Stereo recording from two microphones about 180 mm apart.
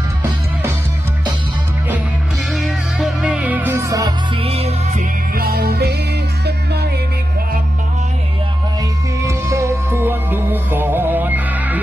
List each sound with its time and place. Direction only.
2.5 s music: 5° right (ahead or behind)
4.4 s music: 35° right (ahead or behind)
5.3 s music: 55° right (ahead or behind)
9.2 s music: 15° right (ahead or behind)